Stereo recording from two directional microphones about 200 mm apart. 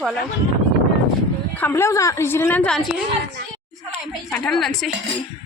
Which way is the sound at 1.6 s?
10° left (ahead or behind).